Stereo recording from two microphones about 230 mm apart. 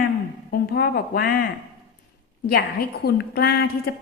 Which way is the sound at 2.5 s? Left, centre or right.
Left.